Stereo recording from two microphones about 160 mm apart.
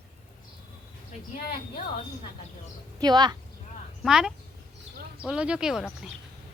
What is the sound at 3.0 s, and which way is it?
Speech, 25° right (ahead or behind).